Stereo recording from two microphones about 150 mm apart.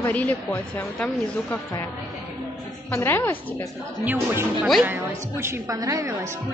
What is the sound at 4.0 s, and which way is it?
A woman's voice, 10° right (ahead or behind).